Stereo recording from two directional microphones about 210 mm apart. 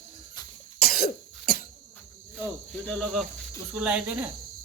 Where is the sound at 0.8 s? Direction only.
45° left (ahead or behind).